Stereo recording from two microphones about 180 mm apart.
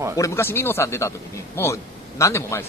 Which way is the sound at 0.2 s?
15° left (ahead or behind).